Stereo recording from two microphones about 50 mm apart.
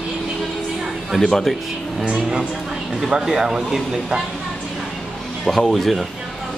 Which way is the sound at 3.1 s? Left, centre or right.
Centre.